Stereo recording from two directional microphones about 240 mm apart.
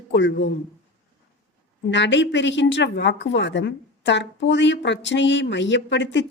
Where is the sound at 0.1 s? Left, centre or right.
Left.